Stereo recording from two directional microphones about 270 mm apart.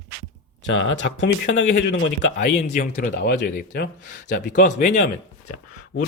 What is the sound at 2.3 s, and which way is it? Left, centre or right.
Speech, left.